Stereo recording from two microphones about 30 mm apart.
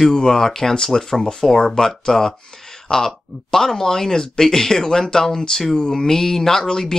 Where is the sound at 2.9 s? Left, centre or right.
Left.